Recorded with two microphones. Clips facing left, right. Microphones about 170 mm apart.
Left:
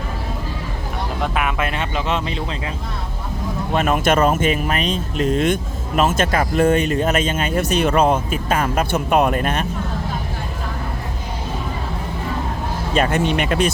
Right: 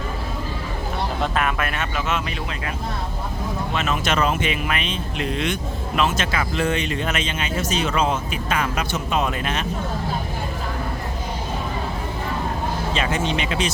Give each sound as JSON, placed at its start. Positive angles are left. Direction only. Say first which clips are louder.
{"t": 1.2, "sound": "speech", "louder": "left 3 dB", "side_deg": 15}
{"t": 3.7, "sound": "speech", "louder": "left 8 dB", "side_deg": 50}
{"t": 12.9, "sound": "speech", "louder": "left 7 dB", "side_deg": 55}